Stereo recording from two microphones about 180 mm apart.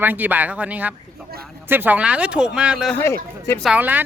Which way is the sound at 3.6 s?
10° right (ahead or behind).